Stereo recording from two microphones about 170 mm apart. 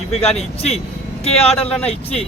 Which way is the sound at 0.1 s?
40° left (ahead or behind).